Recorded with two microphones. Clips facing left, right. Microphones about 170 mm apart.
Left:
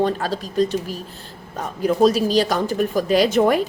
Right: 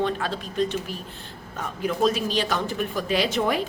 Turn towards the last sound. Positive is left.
turn(degrees=45)  # may be behind; listen again after turning